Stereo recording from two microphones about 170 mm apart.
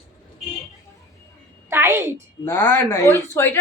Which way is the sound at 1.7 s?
15° right (ahead or behind).